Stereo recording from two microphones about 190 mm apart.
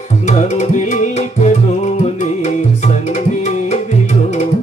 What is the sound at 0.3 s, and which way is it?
Music, 40° left (ahead or behind).